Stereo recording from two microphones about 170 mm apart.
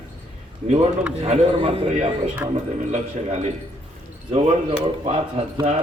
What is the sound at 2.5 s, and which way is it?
Speech, 45° right (ahead or behind).